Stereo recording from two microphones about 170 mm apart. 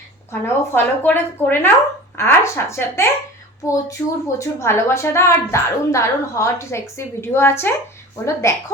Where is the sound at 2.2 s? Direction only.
15° left (ahead or behind).